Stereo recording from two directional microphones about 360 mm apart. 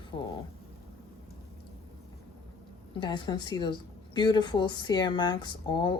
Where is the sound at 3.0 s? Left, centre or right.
Centre.